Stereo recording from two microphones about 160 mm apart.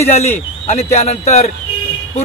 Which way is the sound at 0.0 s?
40° left (ahead or behind).